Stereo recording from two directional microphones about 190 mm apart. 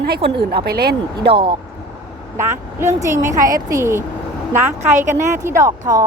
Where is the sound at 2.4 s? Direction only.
15° right (ahead or behind).